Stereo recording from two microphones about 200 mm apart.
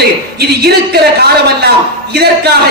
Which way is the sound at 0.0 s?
55° right (ahead or behind).